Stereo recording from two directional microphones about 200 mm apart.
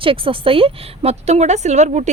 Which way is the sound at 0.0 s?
25° right (ahead or behind).